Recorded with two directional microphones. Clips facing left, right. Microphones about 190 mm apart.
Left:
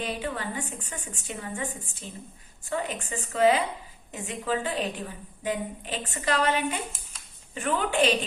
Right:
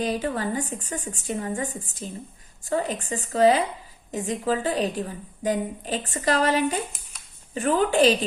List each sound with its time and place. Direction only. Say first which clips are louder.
0.0 s a woman's voice: right 6 dB; 40° right (ahead or behind)